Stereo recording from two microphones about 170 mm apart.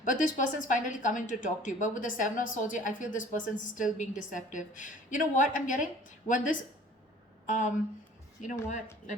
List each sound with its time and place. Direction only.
0.0 s speech: 50° left (ahead or behind)